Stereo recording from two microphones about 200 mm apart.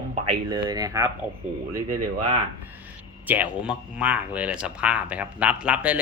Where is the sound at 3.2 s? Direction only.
10° right (ahead or behind).